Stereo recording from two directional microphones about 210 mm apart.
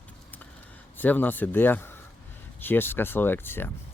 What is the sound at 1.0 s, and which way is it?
Speech, 10° left (ahead or behind).